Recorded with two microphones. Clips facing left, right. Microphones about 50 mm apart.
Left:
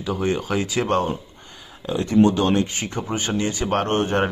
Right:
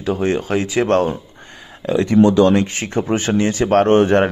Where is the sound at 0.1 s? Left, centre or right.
Right.